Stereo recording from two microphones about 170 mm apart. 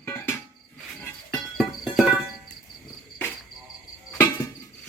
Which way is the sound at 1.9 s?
5° right (ahead or behind).